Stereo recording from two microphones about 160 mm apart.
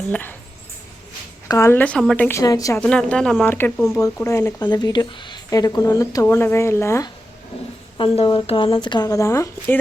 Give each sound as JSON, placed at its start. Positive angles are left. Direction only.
{"t": 0.1, "sound": "a woman's voice", "side_deg": 10}
{"t": 1.5, "sound": "a woman's voice", "side_deg": 20}
{"t": 2.8, "sound": "a woman's voice", "side_deg": 5}
{"t": 7.9, "sound": "speech", "side_deg": 30}